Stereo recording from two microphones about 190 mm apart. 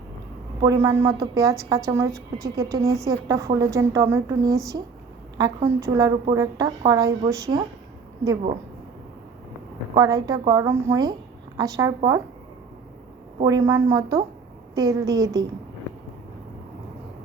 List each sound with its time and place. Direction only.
0.6 s a woman's voice: 15° right (ahead or behind)
9.9 s a woman's voice: 20° right (ahead or behind)
13.4 s a woman's voice: 20° right (ahead or behind)